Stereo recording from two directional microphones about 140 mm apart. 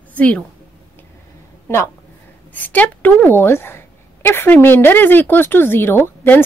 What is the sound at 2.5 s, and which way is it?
A woman's voice, 10° left (ahead or behind).